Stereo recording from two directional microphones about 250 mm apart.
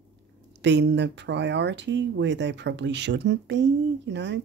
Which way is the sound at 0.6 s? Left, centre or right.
Right.